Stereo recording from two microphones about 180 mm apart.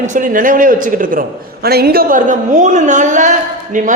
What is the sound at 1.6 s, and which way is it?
A woman's voice, 60° right (ahead or behind).